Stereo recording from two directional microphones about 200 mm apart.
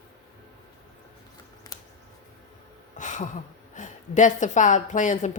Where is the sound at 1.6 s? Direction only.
20° left (ahead or behind).